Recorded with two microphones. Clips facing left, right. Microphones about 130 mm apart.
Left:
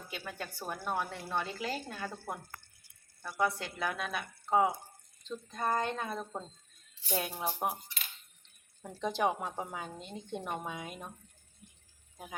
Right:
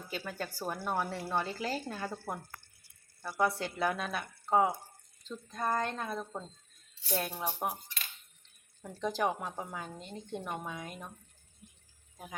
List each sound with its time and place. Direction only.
0.1 s a woman's voice: centre (ahead or behind)
3.9 s a woman's voice: 5° left (ahead or behind)
8.9 s a woman's voice: 5° left (ahead or behind)
12.1 s speech: 10° left (ahead or behind)